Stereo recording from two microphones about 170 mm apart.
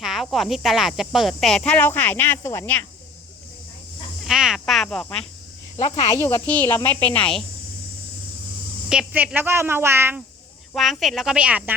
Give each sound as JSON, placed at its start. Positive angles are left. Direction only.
{"t": 0.0, "sound": "speech", "side_deg": 0}
{"t": 4.2, "sound": "speech", "side_deg": 0}
{"t": 6.0, "sound": "speech", "side_deg": 15}
{"t": 8.9, "sound": "a woman's voice", "side_deg": -5}
{"t": 10.8, "sound": "speech", "side_deg": 0}